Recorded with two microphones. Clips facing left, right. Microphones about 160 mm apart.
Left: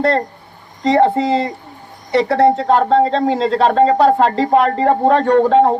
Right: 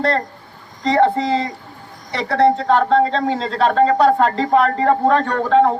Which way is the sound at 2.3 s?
30° left (ahead or behind).